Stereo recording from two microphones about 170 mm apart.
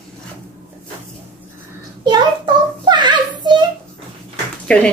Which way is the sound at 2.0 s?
25° right (ahead or behind).